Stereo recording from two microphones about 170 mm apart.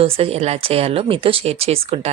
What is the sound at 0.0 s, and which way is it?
A woman's voice, 35° right (ahead or behind).